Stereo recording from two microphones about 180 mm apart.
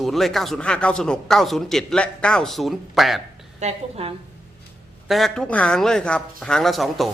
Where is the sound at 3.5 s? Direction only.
35° right (ahead or behind).